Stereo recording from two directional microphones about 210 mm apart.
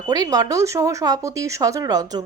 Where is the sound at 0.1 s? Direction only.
20° right (ahead or behind).